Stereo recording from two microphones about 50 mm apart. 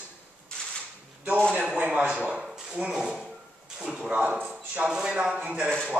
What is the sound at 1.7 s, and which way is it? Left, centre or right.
Speech, right.